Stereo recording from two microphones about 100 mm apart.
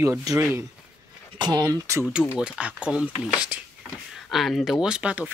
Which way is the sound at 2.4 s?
10° right (ahead or behind).